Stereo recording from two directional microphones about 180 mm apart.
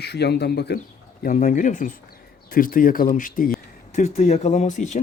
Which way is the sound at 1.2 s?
50° left (ahead or behind).